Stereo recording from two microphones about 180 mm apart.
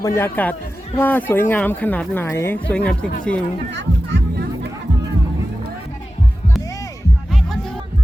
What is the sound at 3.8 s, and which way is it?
Music, 70° right (ahead or behind).